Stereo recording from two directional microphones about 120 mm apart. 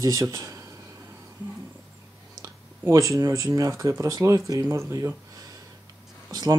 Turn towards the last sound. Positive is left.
turn(degrees=-35)  # may be behind; listen again after turning